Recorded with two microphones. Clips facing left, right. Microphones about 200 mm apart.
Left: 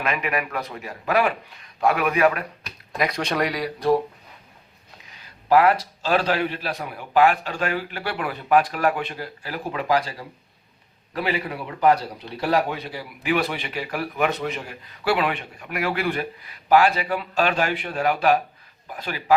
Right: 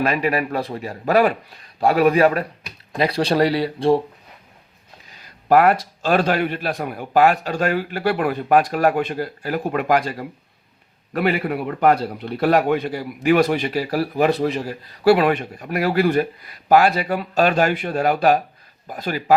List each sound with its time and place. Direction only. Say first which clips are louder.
0.0 s a man's voice: right 6 dB; 35° right (ahead or behind)
5.5 s a man's voice: right 2 dB; 50° right (ahead or behind)